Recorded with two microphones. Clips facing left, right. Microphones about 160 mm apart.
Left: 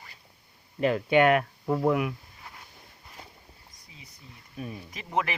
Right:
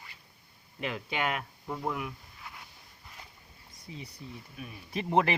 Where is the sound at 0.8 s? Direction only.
50° left (ahead or behind); by 2.1 s 75° left (ahead or behind).